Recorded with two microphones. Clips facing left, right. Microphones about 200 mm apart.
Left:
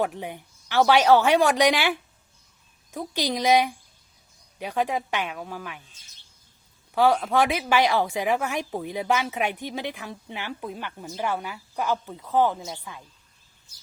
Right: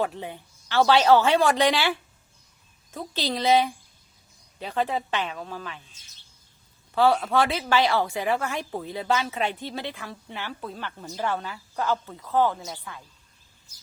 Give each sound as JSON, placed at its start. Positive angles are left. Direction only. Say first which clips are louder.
{"t": 0.0, "sound": "a woman's voice", "louder": "left 1 dB", "side_deg": 15}
{"t": 6.9, "sound": "a woman's voice", "louder": "even", "side_deg": 15}